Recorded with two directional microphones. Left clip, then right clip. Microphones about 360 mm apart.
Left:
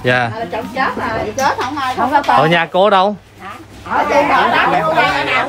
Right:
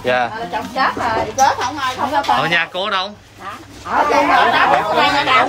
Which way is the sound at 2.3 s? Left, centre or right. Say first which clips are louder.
Left 4 dB; centre.